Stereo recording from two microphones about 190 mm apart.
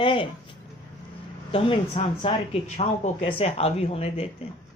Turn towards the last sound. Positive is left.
turn(degrees=30)  # may be behind; listen again after turning